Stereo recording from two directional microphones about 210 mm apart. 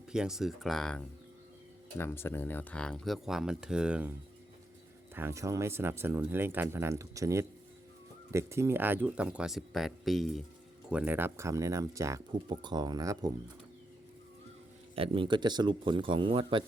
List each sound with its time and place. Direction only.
0.1 s speech: 5° right (ahead or behind)
5.1 s speech: 10° right (ahead or behind)
14.9 s a man's voice: 25° right (ahead or behind)